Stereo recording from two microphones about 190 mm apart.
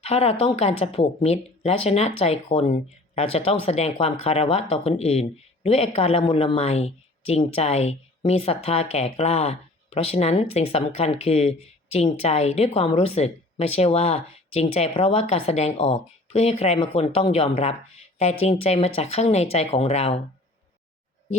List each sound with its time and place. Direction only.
0.0 s speech: 30° left (ahead or behind)